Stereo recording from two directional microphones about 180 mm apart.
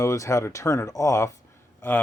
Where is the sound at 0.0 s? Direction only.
15° left (ahead or behind).